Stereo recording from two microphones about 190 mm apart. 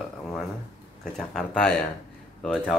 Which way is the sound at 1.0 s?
Centre (ahead or behind).